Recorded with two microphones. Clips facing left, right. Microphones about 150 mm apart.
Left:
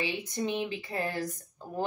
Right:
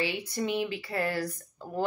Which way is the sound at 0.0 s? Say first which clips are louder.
Right 1 dB; 20° left (ahead or behind).